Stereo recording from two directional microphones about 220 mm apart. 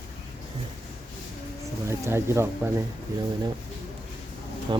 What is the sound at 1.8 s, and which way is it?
Speech, 10° right (ahead or behind).